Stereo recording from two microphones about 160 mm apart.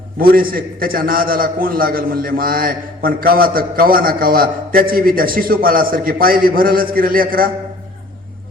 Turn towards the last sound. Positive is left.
turn(degrees=-65)  # may be behind; listen again after turning